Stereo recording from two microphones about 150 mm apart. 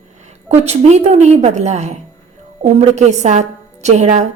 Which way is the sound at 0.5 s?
45° right (ahead or behind).